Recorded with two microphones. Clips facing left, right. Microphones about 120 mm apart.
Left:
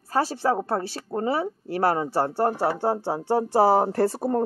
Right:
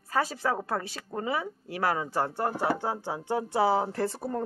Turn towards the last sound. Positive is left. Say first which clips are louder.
# left 8 dB
turn(degrees=40)  # may be behind; listen again after turning